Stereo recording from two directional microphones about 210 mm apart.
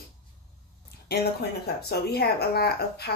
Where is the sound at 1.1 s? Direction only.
50° left (ahead or behind).